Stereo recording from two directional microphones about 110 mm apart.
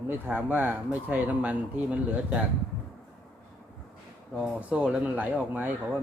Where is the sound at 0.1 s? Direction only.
15° right (ahead or behind).